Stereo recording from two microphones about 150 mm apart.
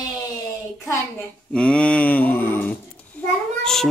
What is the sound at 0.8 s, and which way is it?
Speech, 20° left (ahead or behind).